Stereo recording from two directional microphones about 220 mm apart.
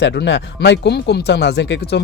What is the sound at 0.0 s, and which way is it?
Speech, 50° left (ahead or behind).